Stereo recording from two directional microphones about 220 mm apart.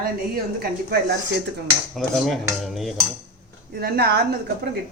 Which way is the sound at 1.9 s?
Centre (ahead or behind).